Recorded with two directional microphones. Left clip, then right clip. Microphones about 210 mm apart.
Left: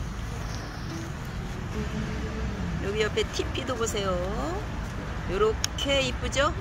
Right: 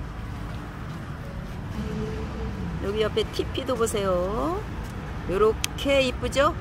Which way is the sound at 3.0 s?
35° right (ahead or behind).